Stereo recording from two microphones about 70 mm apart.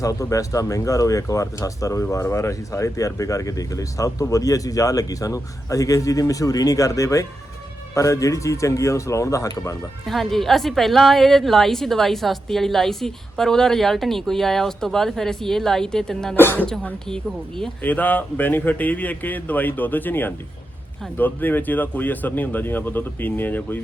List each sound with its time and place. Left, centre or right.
0.0 s speech: left
10.1 s a woman's voice: centre
16.3 s speech: left
17.8 s speech: left